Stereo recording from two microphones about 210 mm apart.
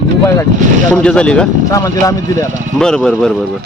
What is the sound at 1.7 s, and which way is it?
Speech, 15° left (ahead or behind).